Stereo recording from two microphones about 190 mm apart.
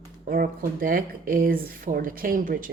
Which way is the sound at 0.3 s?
50° right (ahead or behind).